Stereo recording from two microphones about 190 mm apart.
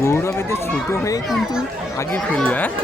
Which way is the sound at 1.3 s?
Centre (ahead or behind).